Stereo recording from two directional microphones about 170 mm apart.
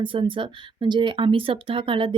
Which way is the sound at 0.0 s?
30° right (ahead or behind).